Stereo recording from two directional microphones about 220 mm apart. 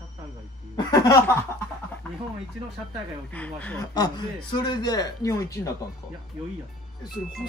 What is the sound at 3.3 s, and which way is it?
Speech, 5° left (ahead or behind).